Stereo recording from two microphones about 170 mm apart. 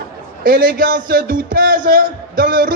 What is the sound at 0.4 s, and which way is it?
A man's voice, 55° right (ahead or behind).